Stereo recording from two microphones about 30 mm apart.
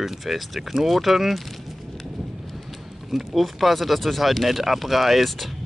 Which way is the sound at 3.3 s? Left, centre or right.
Centre.